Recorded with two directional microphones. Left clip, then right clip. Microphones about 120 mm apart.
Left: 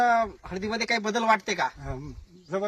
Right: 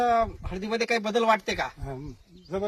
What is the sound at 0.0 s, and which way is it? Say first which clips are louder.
Speech: left 1 dB; 35° right (ahead or behind).